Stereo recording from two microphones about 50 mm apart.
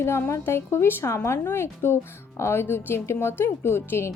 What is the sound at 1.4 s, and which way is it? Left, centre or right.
A woman's voice, left.